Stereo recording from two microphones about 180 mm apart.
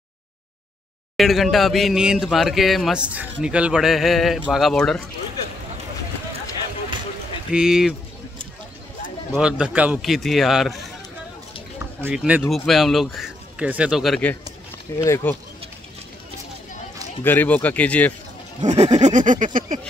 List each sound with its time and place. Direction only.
1.1 s speech: centre (ahead or behind)
7.5 s speech: 5° right (ahead or behind)
9.3 s speech: 5° right (ahead or behind)
11.8 s speech: 10° right (ahead or behind)
15.0 s speech: 15° left (ahead or behind)
17.2 s speech: 10° left (ahead or behind)
18.7 s a sound: 40° right (ahead or behind)